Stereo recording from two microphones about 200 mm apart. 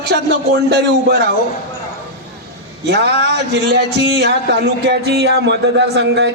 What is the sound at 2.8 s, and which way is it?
Speech, 55° right (ahead or behind).